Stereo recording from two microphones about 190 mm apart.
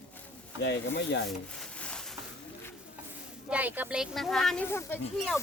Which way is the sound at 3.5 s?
10° right (ahead or behind).